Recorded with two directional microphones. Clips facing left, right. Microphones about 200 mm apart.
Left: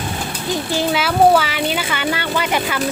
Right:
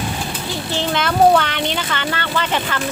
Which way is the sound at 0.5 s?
10° left (ahead or behind).